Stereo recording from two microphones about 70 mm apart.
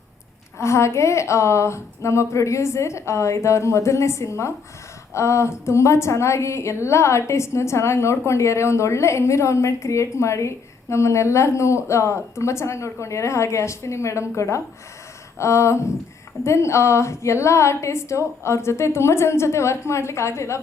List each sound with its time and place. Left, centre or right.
0.6 s a woman's voice: left